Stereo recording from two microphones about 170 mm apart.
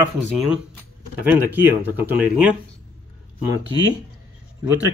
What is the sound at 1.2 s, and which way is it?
Speech, 10° right (ahead or behind).